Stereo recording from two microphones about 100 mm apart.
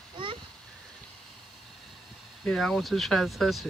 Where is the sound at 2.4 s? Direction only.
5° left (ahead or behind).